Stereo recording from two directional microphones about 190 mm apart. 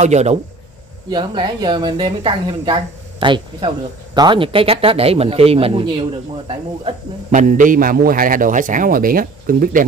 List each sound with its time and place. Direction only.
0.0 s speech: 35° right (ahead or behind)
1.1 s speech: 25° right (ahead or behind); by 9.8 s 45° right (ahead or behind)